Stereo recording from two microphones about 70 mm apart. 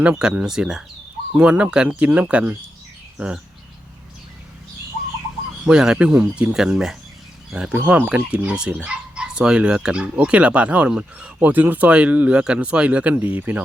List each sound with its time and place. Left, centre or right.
0.0 s speech: centre
5.6 s speech: centre
7.9 s speech: right
11.3 s speech: right